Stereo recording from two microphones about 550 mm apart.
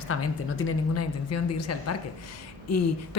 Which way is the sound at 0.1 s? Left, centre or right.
Left.